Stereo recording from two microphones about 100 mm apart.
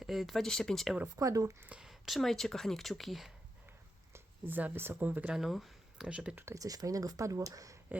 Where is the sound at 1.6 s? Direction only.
10° right (ahead or behind).